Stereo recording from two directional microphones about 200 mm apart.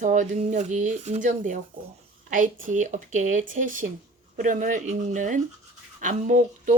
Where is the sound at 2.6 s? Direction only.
40° right (ahead or behind).